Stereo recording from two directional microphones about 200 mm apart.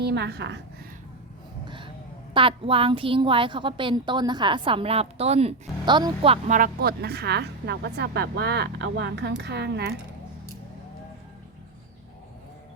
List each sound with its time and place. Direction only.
0.0 s a woman's voice: 55° right (ahead or behind)
1.6 s a sound: 25° right (ahead or behind)
2.3 s a woman's voice: 25° right (ahead or behind)
6.6 s a woman's voice: 50° right (ahead or behind)